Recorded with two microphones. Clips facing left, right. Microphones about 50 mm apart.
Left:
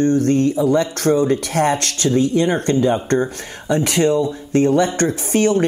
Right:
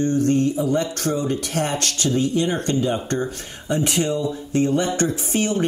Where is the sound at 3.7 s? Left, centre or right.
Left.